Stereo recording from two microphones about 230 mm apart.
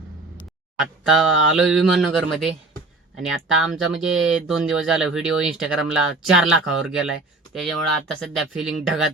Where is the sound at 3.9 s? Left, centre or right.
Centre.